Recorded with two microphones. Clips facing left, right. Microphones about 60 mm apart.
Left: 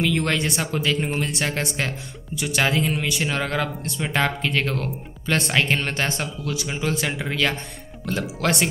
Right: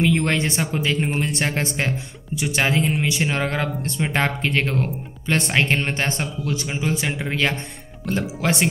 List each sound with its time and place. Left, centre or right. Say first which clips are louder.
0.0 s speech: right 2 dB; right
1.4 s speech: right 2 dB; right
6.7 s speech: left 1 dB; centre
8.4 s speech: left 1 dB; right